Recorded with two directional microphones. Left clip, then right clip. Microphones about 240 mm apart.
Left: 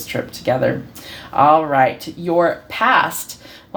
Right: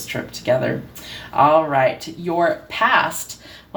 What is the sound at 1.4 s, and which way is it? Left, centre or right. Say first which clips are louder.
Speech: left 2 dB; left.